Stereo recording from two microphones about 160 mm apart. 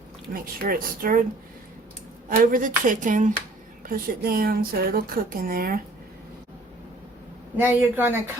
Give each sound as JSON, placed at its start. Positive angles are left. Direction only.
{"t": 0.3, "sound": "speech", "side_deg": -65}
{"t": 2.4, "sound": "speech", "side_deg": -55}
{"t": 3.8, "sound": "speech", "side_deg": -65}
{"t": 7.5, "sound": "speech", "side_deg": -10}